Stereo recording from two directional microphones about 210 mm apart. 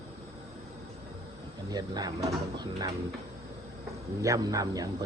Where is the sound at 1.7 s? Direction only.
20° right (ahead or behind).